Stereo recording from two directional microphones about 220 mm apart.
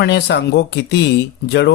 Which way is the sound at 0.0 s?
50° left (ahead or behind).